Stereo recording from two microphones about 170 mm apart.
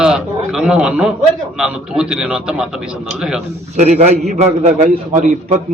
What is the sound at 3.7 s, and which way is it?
A man's voice, 45° right (ahead or behind).